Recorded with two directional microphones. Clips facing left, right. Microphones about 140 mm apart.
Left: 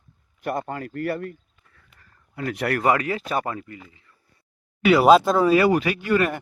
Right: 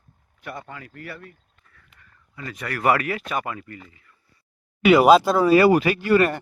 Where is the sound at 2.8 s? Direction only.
25° left (ahead or behind).